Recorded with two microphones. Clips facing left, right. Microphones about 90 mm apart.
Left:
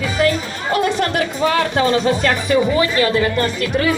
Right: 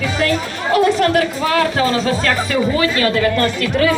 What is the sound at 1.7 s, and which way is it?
Speech, 20° left (ahead or behind).